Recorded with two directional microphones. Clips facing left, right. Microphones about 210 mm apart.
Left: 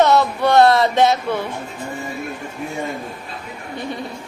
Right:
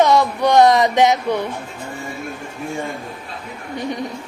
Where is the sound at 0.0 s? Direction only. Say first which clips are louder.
Even; 15° right (ahead or behind).